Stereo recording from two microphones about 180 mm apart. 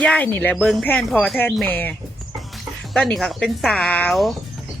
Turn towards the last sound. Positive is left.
turn(degrees=0)  # may be behind; listen again after turning